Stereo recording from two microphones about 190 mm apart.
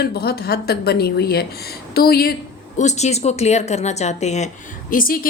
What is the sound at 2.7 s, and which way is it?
A woman's voice, 35° left (ahead or behind).